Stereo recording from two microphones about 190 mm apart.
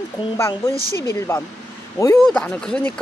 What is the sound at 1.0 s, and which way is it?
Speech, 15° left (ahead or behind).